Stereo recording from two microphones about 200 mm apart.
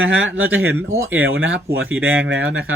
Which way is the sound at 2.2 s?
70° right (ahead or behind).